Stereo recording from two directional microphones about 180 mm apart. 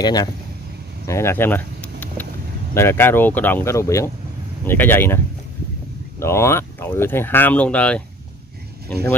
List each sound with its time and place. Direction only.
0.0 s speech: 20° left (ahead or behind)
1.0 s vehicle: 15° left (ahead or behind)
2.7 s speech: 15° left (ahead or behind)